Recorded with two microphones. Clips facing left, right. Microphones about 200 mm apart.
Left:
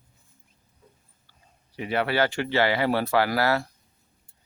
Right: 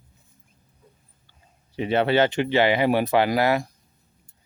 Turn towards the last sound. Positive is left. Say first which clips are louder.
# right 3 dB
turn(degrees=-15)  # may be behind; listen again after turning